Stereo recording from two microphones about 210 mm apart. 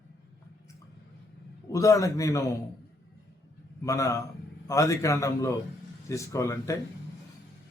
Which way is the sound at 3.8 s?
15° left (ahead or behind).